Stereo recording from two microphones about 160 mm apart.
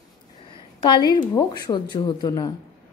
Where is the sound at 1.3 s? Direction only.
25° left (ahead or behind).